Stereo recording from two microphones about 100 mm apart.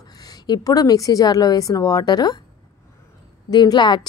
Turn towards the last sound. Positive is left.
turn(degrees=45)  # may be behind; listen again after turning